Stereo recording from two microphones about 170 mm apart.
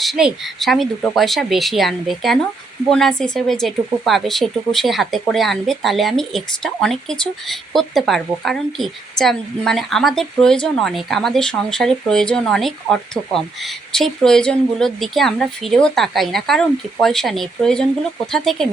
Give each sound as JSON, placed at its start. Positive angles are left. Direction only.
{"t": 0.0, "sound": "speech", "side_deg": 0}